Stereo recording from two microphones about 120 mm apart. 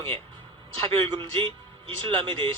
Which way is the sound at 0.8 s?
45° right (ahead or behind).